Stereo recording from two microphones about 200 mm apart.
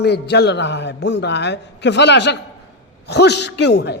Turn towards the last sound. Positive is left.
turn(degrees=60)  # may be behind; listen again after turning